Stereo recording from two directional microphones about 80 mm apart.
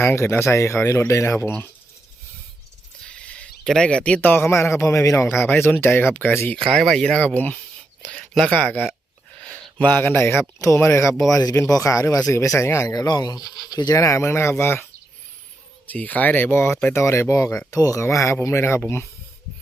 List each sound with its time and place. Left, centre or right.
0.2 s speech: left
3.0 s a sound: centre
3.7 s speech: centre
4.4 s speech: left
5.2 s speech: left
6.7 s speech: centre; by 11.1 s left
11.3 s speech: left
13.1 s speech: left
13.9 s speech: left
15.9 s speech: left